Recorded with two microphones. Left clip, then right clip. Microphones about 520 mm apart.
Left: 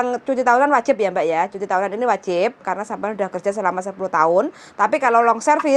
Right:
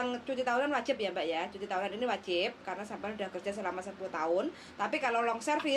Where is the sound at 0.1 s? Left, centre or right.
Left.